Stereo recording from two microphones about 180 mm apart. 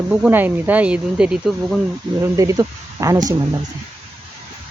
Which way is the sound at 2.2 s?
15° right (ahead or behind).